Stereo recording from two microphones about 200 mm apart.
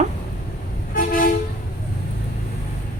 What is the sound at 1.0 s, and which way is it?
Toot, 45° left (ahead or behind).